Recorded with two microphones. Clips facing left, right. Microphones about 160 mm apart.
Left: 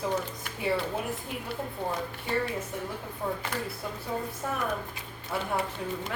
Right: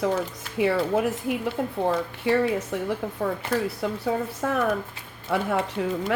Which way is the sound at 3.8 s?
80° right.